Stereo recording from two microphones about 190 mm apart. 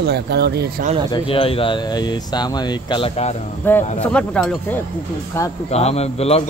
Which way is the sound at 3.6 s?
10° left (ahead or behind).